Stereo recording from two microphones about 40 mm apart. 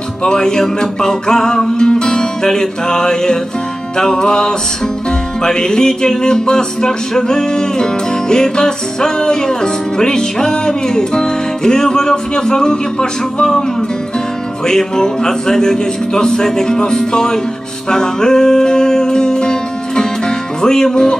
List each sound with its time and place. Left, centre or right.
0.2 s music: centre
14.7 s music: centre